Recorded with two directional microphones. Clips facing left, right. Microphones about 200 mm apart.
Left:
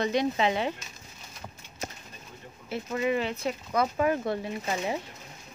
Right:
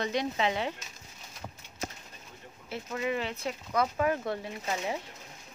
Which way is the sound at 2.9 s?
15° left (ahead or behind).